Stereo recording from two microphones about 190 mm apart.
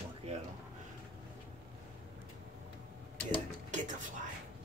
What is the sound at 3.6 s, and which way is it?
Music, 40° right (ahead or behind).